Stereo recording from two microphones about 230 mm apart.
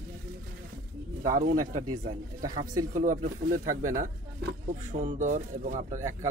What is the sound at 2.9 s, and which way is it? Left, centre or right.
Speech, right.